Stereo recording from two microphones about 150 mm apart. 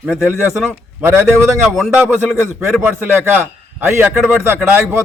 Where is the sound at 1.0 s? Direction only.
15° right (ahead or behind).